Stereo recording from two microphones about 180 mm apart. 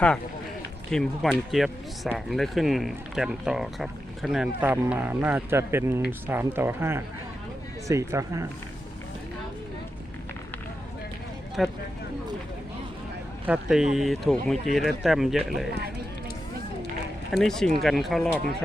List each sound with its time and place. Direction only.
0.9 s speech: 5° left (ahead or behind); by 8.4 s 15° right (ahead or behind)
11.6 s speech: centre (ahead or behind)
13.4 s speech: 5° right (ahead or behind)
17.3 s speech: centre (ahead or behind)